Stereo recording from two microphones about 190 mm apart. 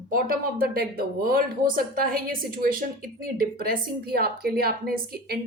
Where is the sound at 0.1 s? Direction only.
50° right (ahead or behind).